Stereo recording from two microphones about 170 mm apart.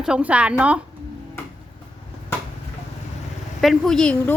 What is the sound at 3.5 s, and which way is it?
Speech, centre (ahead or behind).